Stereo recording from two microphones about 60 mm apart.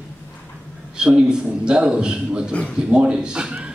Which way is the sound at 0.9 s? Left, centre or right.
Centre.